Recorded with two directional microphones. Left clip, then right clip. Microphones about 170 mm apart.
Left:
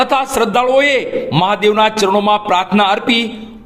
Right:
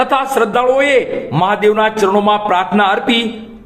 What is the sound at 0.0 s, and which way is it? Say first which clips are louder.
A man's voice: even; 30° left (ahead or behind).